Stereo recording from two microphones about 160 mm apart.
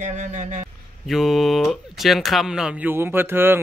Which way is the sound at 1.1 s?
Centre (ahead or behind).